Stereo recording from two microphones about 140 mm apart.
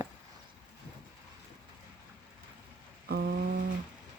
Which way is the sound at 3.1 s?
90° right.